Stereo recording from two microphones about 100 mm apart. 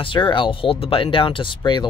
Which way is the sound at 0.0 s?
55° left (ahead or behind).